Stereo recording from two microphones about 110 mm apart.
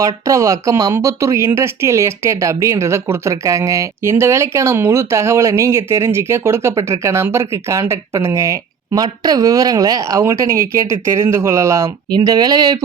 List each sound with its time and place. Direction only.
0.0 s speech: 30° right (ahead or behind)